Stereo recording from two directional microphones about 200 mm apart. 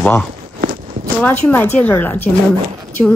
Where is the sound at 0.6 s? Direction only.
40° right (ahead or behind).